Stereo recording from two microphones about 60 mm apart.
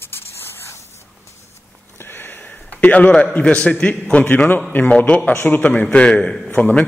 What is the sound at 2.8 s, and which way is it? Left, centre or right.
A man's voice, left.